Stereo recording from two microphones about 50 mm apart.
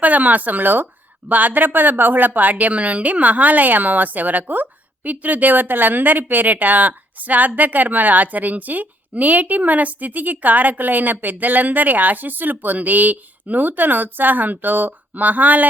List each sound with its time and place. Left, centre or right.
0.0 s a woman's voice: right